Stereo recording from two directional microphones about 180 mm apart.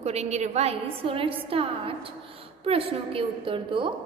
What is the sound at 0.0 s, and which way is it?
A woman's voice, 35° right (ahead or behind).